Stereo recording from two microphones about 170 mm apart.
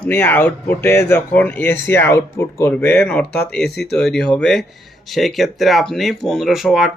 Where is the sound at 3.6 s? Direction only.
75° left (ahead or behind).